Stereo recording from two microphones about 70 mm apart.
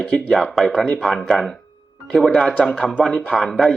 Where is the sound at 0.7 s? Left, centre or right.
Centre.